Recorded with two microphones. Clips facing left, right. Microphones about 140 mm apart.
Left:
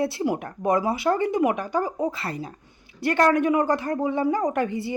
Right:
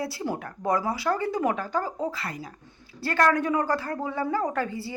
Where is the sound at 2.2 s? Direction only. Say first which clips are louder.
Left 4 dB; 25° left (ahead or behind).